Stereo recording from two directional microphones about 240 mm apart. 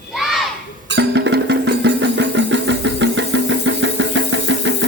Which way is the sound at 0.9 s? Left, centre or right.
Right.